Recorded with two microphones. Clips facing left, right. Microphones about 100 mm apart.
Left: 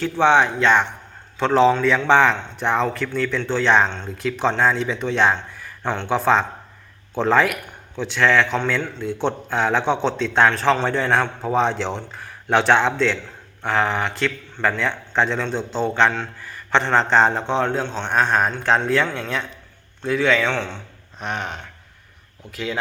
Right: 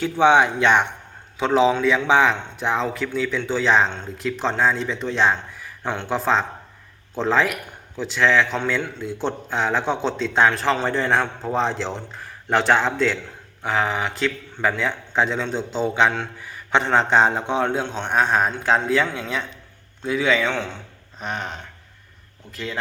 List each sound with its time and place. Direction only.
0.0 s a man's voice: 15° right (ahead or behind)
1.4 s a man's voice: 5° right (ahead or behind)